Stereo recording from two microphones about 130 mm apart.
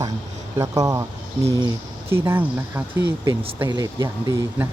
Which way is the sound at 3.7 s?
25° right (ahead or behind).